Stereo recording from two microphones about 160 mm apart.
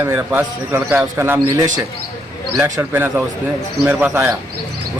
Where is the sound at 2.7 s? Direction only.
15° right (ahead or behind).